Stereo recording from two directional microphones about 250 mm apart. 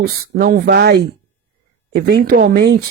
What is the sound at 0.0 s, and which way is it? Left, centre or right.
Speech, right.